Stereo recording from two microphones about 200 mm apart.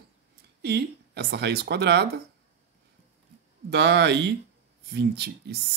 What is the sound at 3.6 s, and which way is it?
Speech, 55° right (ahead or behind).